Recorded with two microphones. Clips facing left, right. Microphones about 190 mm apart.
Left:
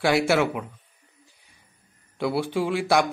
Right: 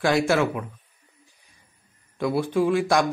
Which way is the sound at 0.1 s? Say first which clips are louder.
Even; 10° left (ahead or behind).